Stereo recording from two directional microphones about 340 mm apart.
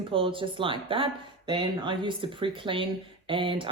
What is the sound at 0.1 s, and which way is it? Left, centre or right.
Speech, centre.